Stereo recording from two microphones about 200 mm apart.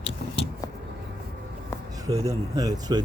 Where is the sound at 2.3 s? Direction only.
20° right (ahead or behind).